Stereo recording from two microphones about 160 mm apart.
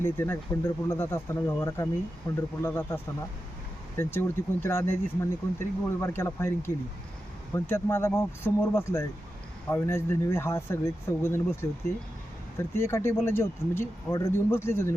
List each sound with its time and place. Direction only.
0.0 s speech: 15° left (ahead or behind)
2.6 s speech: 15° left (ahead or behind)